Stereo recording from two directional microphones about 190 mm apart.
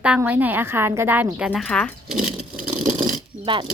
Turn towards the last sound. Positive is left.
turn(degrees=-25)  # may be behind; listen again after turning